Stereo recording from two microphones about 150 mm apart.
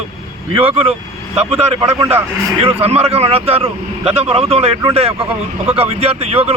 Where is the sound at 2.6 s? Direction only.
45° right (ahead or behind).